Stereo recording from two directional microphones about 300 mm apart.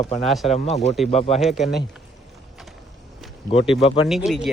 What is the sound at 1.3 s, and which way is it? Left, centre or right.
Speech, centre.